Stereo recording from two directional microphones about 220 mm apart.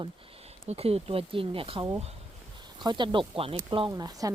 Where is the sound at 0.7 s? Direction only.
25° right (ahead or behind).